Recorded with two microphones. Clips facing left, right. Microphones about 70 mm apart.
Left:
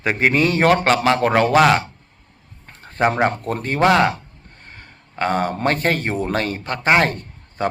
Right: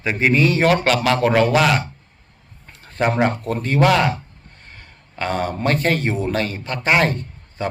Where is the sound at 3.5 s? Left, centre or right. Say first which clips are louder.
Even; left.